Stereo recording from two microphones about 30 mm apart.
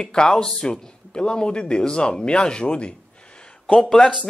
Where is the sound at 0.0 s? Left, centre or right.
Left.